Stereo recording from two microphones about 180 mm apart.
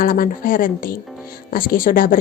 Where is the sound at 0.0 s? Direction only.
50° left (ahead or behind).